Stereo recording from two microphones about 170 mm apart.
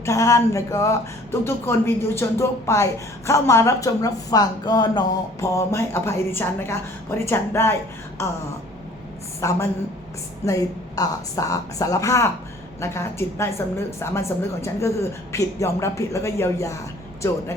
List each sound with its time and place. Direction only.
0.0 s speech: 20° left (ahead or behind)
9.4 s speech: 15° left (ahead or behind)